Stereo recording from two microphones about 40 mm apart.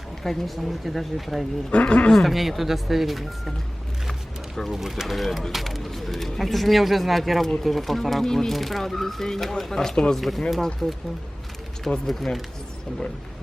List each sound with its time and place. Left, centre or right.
0.2 s speech: centre
1.7 s speech: left
2.1 s speech: centre
4.7 s speech: centre
10.2 s speech: centre
12.0 s speech: centre